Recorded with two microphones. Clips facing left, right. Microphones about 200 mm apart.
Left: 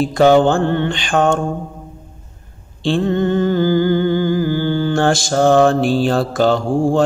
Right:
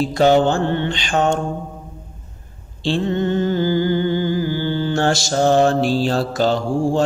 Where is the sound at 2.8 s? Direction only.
50° left (ahead or behind).